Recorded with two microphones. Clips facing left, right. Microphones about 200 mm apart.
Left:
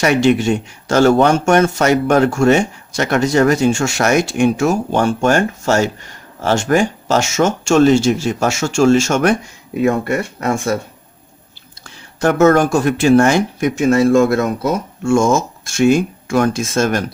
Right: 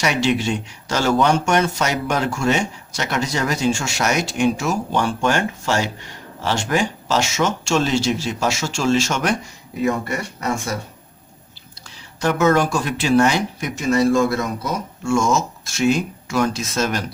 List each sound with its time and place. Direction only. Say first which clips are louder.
0.0 s speech: left 7 dB; 50° left (ahead or behind)
12.2 s speech: left 6 dB; 50° left (ahead or behind)